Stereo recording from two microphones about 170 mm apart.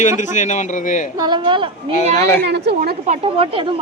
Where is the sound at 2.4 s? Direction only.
90° right.